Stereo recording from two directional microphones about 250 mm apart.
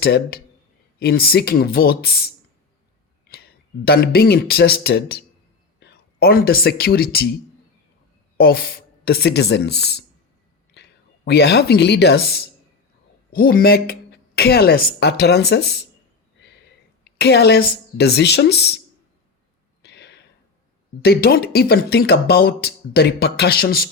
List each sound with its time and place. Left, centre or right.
0.0 s speech: left
8.4 s speech: left
10.8 s a sound: left
11.3 s speech: left
17.0 s speech: left
19.8 s a sound: left
21.0 s speech: left